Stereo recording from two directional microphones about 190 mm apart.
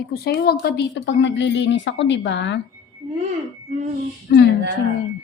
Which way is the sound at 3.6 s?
35° right (ahead or behind).